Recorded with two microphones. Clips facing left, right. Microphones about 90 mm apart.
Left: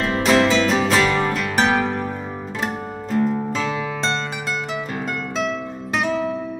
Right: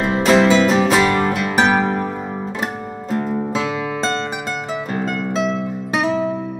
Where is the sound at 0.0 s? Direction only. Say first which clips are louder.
Right 3 dB; 5° right (ahead or behind).